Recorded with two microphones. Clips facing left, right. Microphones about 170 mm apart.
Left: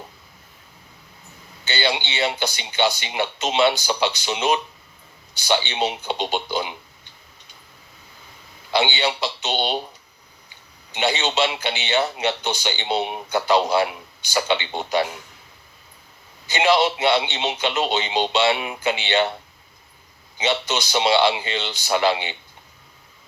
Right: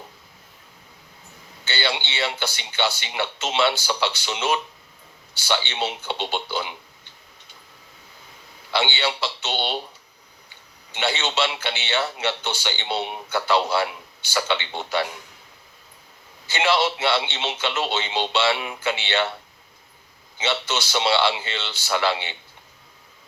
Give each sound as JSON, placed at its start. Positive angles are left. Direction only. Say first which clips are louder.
{"t": 1.6, "sound": "a man's voice", "louder": "left 3 dB", "side_deg": 15}
{"t": 8.7, "sound": "a man's voice", "louder": "left 3 dB", "side_deg": 15}
{"t": 10.9, "sound": "a man's voice", "louder": "left 3 dB", "side_deg": 15}
{"t": 16.5, "sound": "a man's voice", "louder": "left 3 dB", "side_deg": 20}
{"t": 20.4, "sound": "a man's voice", "louder": "left 3 dB", "side_deg": 15}